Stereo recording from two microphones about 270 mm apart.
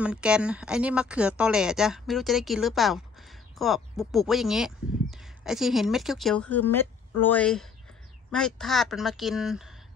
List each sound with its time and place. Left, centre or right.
0.0 s speech: centre